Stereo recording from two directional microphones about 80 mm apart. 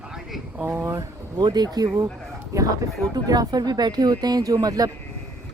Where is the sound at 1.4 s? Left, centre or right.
Right.